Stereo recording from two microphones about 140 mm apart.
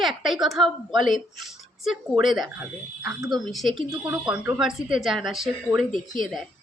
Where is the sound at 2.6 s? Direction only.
15° right (ahead or behind).